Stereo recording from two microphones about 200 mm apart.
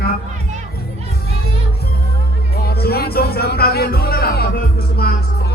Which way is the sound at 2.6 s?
50° left (ahead or behind).